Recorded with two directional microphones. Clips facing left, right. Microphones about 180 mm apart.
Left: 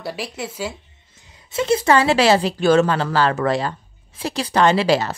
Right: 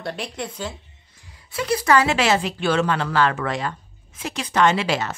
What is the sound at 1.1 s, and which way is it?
A woman's voice, 20° left (ahead or behind).